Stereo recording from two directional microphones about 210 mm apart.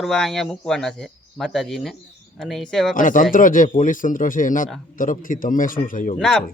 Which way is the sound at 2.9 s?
40° left (ahead or behind).